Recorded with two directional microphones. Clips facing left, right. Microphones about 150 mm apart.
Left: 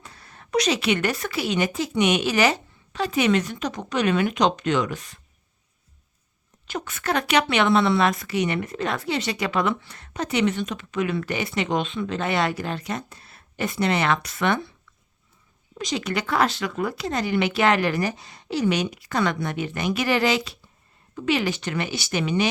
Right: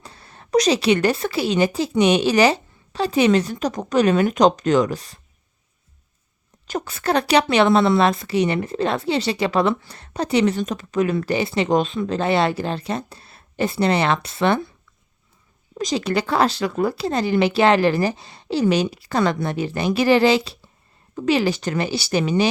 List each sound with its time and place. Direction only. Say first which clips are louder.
0.0 s a woman's voice: right 3 dB; 30° right (ahead or behind)
6.7 s a woman's voice: right 4 dB; 35° right (ahead or behind)
15.8 s a woman's voice: right 5 dB; 35° right (ahead or behind)